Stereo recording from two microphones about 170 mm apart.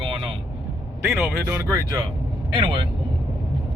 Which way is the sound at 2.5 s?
30° right (ahead or behind).